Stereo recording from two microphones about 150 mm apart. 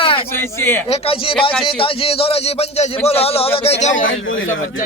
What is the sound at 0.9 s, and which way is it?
Speech, 40° left (ahead or behind).